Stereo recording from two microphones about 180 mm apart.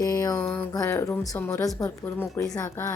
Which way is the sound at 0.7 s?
15° left (ahead or behind).